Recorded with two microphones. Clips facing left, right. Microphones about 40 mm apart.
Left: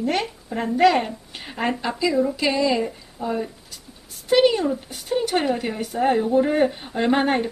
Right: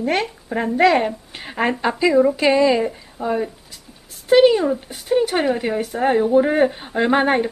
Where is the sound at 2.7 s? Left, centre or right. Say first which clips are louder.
Right 4 dB; right.